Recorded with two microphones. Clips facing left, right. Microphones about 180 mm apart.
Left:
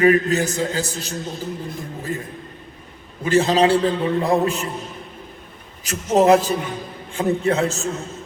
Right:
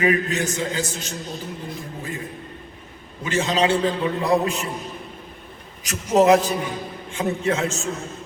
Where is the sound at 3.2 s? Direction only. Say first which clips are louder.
Left 5 dB; 35° left (ahead or behind).